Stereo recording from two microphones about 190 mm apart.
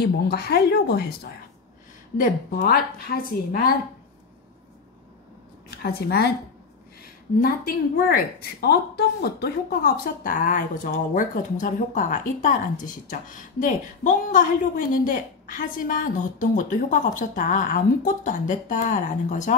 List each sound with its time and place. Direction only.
0.0 s a woman's voice: 55° left (ahead or behind)
2.1 s a woman's voice: 50° left (ahead or behind)
5.8 s a woman's voice: 55° left (ahead or behind)
7.4 s a woman's voice: 50° left (ahead or behind)